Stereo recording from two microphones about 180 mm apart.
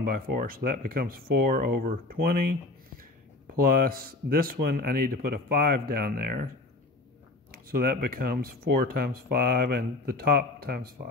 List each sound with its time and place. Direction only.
0.0 s speech: 55° right (ahead or behind)
3.6 s speech: 55° right (ahead or behind)
7.5 s speech: 55° right (ahead or behind)